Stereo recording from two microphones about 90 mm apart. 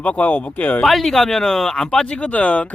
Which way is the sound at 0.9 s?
5° left (ahead or behind).